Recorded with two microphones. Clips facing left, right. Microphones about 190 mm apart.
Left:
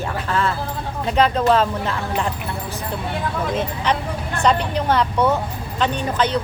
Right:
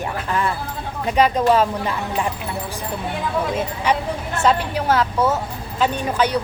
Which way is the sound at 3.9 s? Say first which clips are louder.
Right 1 dB; 10° right (ahead or behind).